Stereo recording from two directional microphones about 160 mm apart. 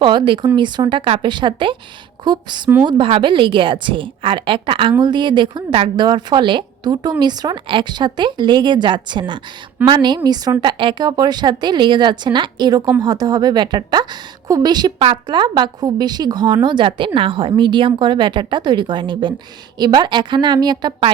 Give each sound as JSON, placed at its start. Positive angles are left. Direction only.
{"t": 0.0, "sound": "a woman's voice", "side_deg": -30}